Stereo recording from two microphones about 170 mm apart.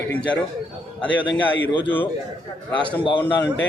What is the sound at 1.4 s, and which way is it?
Speech, 10° left (ahead or behind).